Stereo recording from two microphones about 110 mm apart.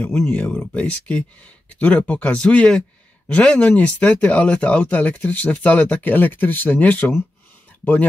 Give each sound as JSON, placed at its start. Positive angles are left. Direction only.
{"t": 0.0, "sound": "speech", "side_deg": 20}